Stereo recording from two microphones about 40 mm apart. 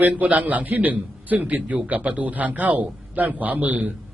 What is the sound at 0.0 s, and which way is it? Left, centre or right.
A man's voice, right.